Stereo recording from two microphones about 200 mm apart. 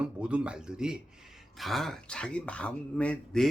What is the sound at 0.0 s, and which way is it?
Speech, 5° right (ahead or behind).